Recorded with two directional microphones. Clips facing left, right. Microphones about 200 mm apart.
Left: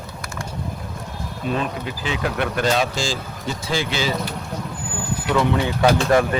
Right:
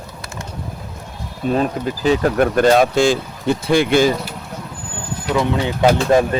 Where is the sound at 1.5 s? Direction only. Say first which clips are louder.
Right 7 dB; 40° right (ahead or behind).